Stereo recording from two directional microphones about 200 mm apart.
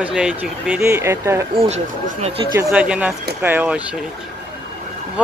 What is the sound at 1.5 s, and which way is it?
Speech, 30° right (ahead or behind).